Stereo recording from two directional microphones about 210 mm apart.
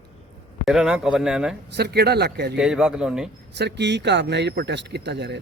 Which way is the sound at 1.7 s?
50° right (ahead or behind).